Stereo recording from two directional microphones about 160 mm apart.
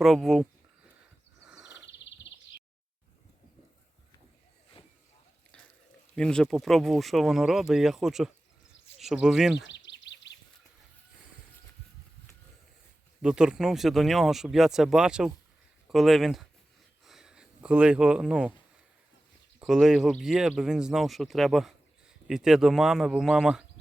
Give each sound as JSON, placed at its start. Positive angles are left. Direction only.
{"t": 0.0, "sound": "speech", "side_deg": 0}
{"t": 1.5, "sound": "bird", "side_deg": -5}
{"t": 6.1, "sound": "speech", "side_deg": 5}
{"t": 9.7, "sound": "a sound", "side_deg": 90}
{"t": 13.2, "sound": "speech", "side_deg": -5}
{"t": 17.1, "sound": "a sound", "side_deg": -5}
{"t": 19.5, "sound": "speech", "side_deg": -5}